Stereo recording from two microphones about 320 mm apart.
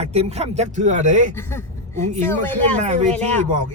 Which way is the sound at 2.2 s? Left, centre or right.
Centre.